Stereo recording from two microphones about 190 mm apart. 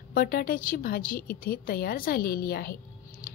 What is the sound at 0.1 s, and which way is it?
Speech, 50° left (ahead or behind).